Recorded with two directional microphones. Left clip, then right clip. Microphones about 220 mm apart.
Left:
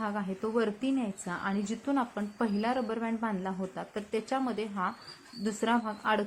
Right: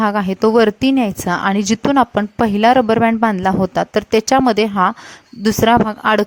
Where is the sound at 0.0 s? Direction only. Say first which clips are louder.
Right 19 dB; 50° right (ahead or behind).